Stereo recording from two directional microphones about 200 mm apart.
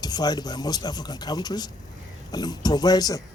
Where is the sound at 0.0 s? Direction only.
20° left (ahead or behind).